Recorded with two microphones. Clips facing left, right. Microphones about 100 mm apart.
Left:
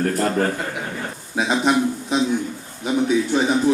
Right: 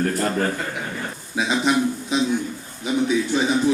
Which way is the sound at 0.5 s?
15° left (ahead or behind).